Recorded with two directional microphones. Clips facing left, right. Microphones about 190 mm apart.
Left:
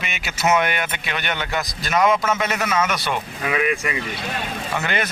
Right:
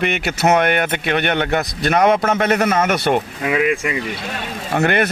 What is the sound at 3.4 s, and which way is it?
Speech, 25° right (ahead or behind).